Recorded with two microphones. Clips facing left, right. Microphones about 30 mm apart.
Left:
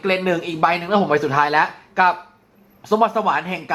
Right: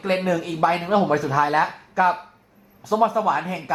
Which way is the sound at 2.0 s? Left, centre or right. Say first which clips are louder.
Left 3 dB; left.